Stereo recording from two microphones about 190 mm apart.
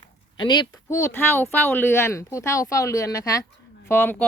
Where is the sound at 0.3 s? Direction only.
25° left (ahead or behind).